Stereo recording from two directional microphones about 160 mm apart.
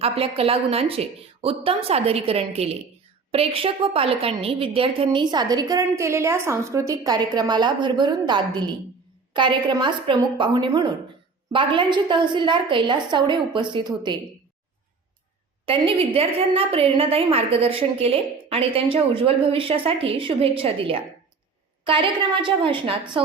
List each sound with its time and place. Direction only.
0.0 s a woman's voice: 35° right (ahead or behind)
15.6 s a woman's voice: 35° right (ahead or behind)